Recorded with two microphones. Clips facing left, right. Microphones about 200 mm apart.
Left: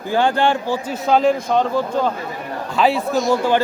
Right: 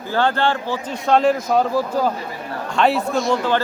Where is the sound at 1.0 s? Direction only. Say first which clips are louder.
Even; centre (ahead or behind).